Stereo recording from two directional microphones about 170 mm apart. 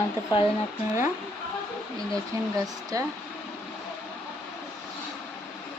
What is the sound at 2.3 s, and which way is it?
Speech, 20° right (ahead or behind).